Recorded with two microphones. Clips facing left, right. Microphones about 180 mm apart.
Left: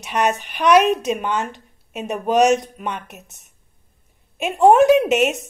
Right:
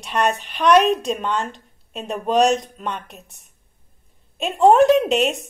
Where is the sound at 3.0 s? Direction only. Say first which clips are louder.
Left 1 dB; 65° left (ahead or behind).